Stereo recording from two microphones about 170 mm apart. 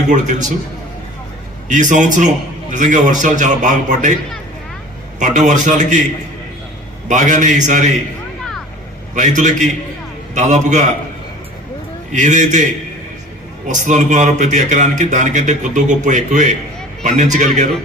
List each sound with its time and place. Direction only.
0.1 s a man's voice: 45° right (ahead or behind)
1.6 s a man's voice: 50° right (ahead or behind)
5.2 s a man's voice: 45° right (ahead or behind)
7.1 s a man's voice: 45° right (ahead or behind)
9.1 s a man's voice: 45° right (ahead or behind)
12.1 s a man's voice: 45° right (ahead or behind)
13.7 s a man's voice: 45° right (ahead or behind)